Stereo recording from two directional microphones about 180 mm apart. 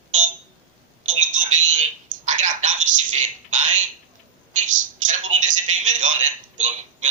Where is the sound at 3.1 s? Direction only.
40° right (ahead or behind).